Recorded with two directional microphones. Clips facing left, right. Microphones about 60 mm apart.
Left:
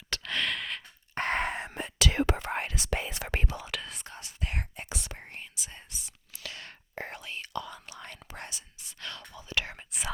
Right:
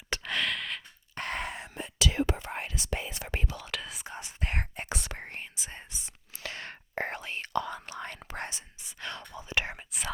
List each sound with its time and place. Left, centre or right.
0.3 s a sound: centre
1.1 s whispering: left
3.7 s whispering: centre
4.0 s whispering: centre
4.4 s whispering: right
5.5 s whispering: right
9.0 s whispering: right
9.7 s whispering: centre